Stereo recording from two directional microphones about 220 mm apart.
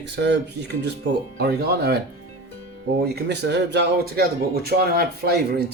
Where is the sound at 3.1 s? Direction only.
50° right (ahead or behind).